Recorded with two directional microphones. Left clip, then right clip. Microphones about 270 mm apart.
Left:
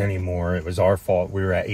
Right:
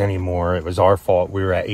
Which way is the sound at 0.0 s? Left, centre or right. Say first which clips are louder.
Right 5 dB; right.